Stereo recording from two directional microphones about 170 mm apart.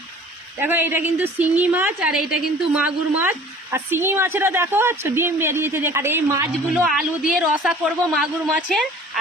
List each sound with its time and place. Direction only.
0.6 s a woman's voice: 10° right (ahead or behind)
6.8 s speech: 5° right (ahead or behind)